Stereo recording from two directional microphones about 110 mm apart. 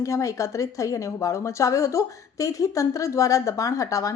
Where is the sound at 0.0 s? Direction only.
30° left (ahead or behind).